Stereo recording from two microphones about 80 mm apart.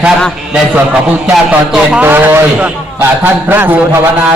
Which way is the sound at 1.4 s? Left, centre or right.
Centre.